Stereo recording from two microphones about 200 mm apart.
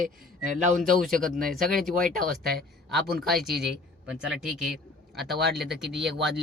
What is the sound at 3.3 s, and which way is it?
Speech, centre (ahead or behind).